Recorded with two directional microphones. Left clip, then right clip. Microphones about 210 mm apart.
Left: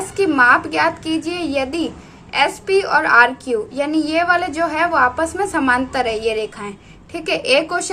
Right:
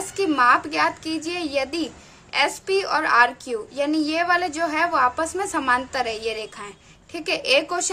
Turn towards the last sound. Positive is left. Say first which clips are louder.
# left 4 dB
turn(degrees=-20)  # may be behind; listen again after turning